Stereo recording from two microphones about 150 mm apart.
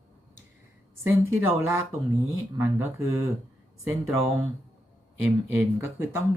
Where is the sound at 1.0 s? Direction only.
15° right (ahead or behind).